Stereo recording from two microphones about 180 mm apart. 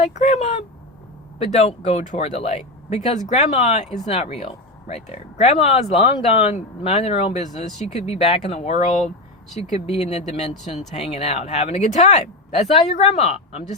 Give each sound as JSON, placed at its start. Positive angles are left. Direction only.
{"t": 0.1, "sound": "speech", "side_deg": 40}